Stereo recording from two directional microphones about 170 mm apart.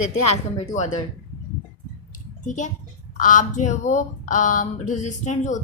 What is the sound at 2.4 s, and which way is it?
A child's voice, 45° left (ahead or behind).